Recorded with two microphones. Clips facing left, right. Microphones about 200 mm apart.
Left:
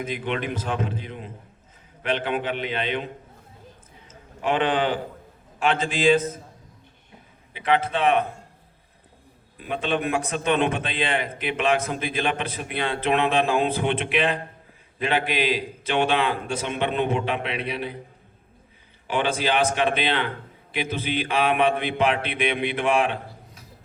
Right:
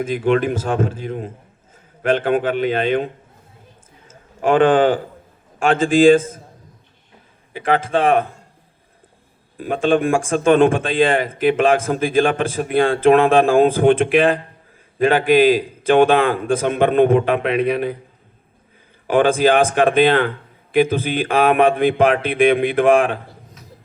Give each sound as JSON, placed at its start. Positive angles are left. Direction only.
{"t": 0.0, "sound": "speech", "side_deg": -45}
{"t": 4.1, "sound": "a man's voice", "side_deg": -50}
{"t": 7.5, "sound": "speech", "side_deg": -45}
{"t": 9.6, "sound": "speech", "side_deg": -45}
{"t": 19.0, "sound": "speech", "side_deg": -50}